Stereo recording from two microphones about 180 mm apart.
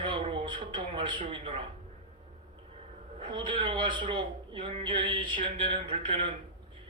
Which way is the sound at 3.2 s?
30° right (ahead or behind).